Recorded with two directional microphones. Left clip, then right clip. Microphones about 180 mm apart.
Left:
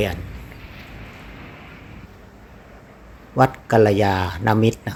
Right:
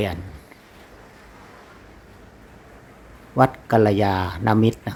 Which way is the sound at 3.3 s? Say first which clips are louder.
Left 1 dB; 5° right (ahead or behind).